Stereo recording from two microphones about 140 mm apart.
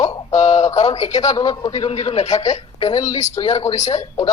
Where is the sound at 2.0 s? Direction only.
50° left (ahead or behind).